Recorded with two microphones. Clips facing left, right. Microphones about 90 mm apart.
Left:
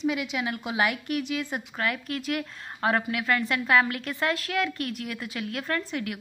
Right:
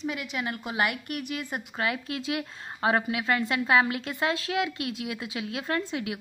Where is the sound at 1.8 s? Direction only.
20° right (ahead or behind).